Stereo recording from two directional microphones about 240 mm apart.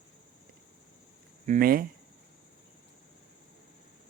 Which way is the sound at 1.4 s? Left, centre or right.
Right.